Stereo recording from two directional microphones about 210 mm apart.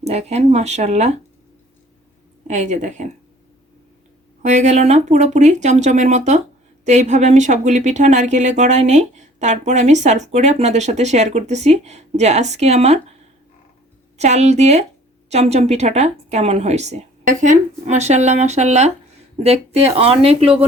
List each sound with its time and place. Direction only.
0.0 s speech: 30° right (ahead or behind)
2.5 s speech: 35° right (ahead or behind)
4.4 s speech: 35° right (ahead or behind)
14.2 s speech: 30° right (ahead or behind)